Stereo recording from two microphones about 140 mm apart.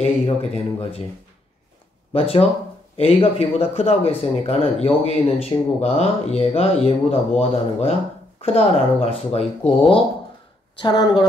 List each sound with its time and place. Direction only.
0.0 s speech: 45° left (ahead or behind)
2.1 s speech: 40° left (ahead or behind)
10.8 s speech: 35° left (ahead or behind)